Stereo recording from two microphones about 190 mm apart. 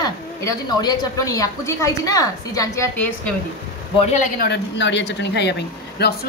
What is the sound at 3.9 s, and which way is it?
Speech, 35° left (ahead or behind).